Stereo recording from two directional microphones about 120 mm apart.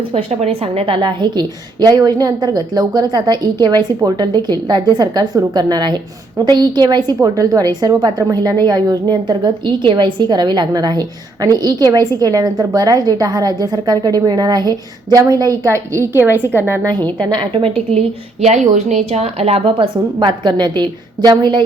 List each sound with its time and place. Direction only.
0.1 s a woman's voice: 55° right (ahead or behind); by 16.9 s 20° right (ahead or behind)
16.9 s a woman's voice: 35° right (ahead or behind); by 18.0 s 50° right (ahead or behind)
18.4 s a woman's voice: 85° right; by 21.6 s 40° right (ahead or behind)